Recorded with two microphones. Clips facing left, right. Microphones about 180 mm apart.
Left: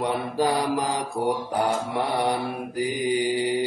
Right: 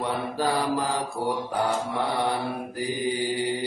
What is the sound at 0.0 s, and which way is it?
Mantra, 15° left (ahead or behind).